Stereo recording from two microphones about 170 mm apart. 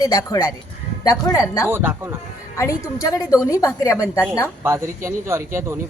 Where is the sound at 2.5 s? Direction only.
20° left (ahead or behind).